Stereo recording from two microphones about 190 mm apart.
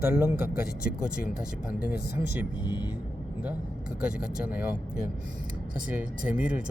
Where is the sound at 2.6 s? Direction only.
20° left (ahead or behind).